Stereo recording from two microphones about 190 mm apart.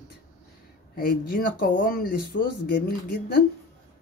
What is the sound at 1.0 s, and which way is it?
Speech, 50° left (ahead or behind).